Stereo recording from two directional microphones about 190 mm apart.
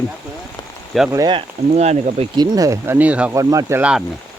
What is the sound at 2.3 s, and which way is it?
Speech, 20° right (ahead or behind).